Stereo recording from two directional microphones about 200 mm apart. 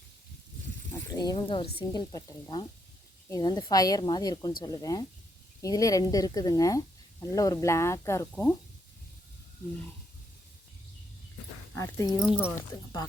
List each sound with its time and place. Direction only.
1.3 s speech: 25° left (ahead or behind)
11.7 s speech: 15° left (ahead or behind)